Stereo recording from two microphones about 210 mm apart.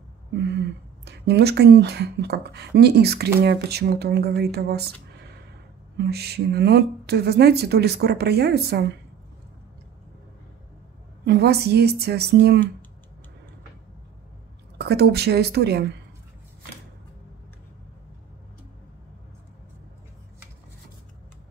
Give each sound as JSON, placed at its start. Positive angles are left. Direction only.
{"t": 0.3, "sound": "speech", "side_deg": -55}
{"t": 5.9, "sound": "speech", "side_deg": -50}
{"t": 11.2, "sound": "speech", "side_deg": -50}
{"t": 14.8, "sound": "speech", "side_deg": -50}